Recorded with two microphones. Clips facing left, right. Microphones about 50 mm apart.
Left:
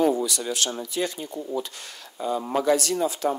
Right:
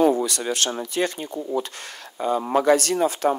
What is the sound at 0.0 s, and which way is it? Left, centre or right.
Speech, right.